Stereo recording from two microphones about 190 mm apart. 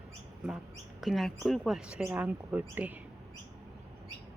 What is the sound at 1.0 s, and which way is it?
Speech, centre (ahead or behind).